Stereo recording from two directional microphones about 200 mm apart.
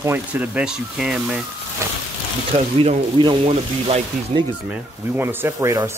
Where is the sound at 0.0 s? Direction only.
10° right (ahead or behind).